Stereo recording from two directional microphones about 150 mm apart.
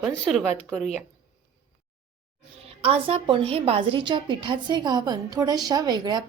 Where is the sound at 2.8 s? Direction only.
40° right (ahead or behind).